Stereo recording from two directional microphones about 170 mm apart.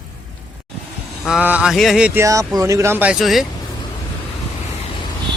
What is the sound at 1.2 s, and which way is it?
Speech, 5° right (ahead or behind).